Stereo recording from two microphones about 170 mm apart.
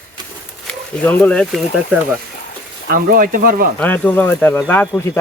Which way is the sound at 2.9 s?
55° right (ahead or behind).